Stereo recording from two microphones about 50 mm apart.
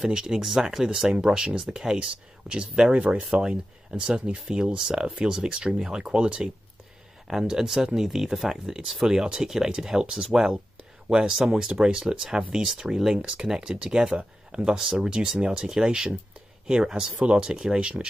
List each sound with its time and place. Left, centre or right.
0.0 s speech: centre